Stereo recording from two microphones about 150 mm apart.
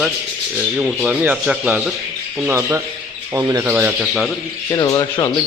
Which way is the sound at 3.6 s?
15° right (ahead or behind).